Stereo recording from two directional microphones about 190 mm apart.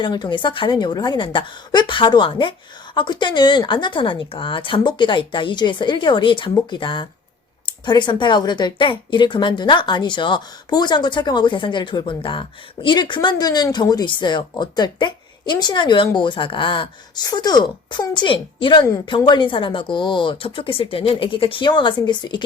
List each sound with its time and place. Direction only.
0.0 s a woman's voice: 25° left (ahead or behind)